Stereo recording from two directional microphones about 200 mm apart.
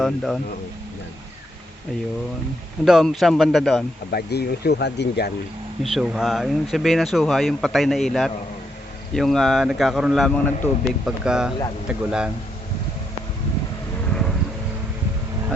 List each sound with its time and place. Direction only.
0.0 s speech: centre (ahead or behind)
2.8 s speech: centre (ahead or behind)
4.1 s speech: 55° left (ahead or behind)
5.8 s speech: centre (ahead or behind)
14.1 s vehicle: centre (ahead or behind)